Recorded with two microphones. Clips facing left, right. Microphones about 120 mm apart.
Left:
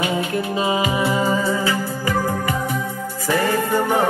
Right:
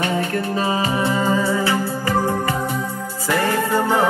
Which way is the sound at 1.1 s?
20° left (ahead or behind).